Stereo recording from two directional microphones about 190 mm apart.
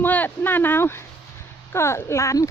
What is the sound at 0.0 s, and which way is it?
Speech, 10° left (ahead or behind).